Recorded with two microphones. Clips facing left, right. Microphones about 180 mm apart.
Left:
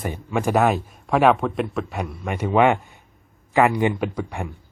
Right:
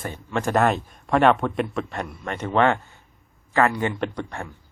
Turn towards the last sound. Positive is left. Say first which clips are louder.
# left 2 dB
turn(degrees=10)  # may be behind; listen again after turning